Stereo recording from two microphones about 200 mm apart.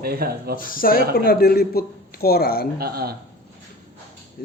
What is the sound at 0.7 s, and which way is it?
Speech, 45° left (ahead or behind).